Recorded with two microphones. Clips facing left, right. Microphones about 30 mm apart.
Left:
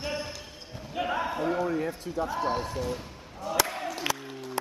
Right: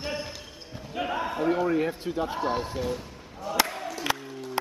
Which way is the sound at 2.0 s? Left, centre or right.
Right.